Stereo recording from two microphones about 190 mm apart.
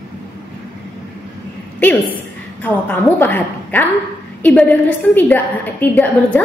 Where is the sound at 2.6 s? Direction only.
10° left (ahead or behind).